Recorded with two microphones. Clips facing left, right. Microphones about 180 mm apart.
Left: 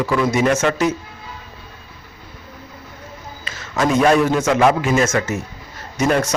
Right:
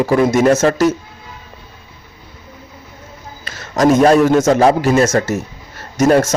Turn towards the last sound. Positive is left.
turn(degrees=-45)  # may be behind; listen again after turning